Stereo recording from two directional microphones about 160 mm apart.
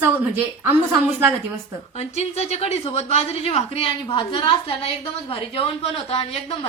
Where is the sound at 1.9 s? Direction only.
40° left (ahead or behind).